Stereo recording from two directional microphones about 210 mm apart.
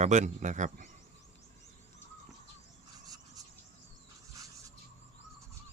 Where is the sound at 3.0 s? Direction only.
20° right (ahead or behind).